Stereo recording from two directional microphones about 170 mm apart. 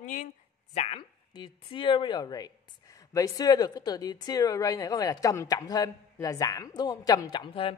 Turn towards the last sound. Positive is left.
turn(degrees=30)  # may be behind; listen again after turning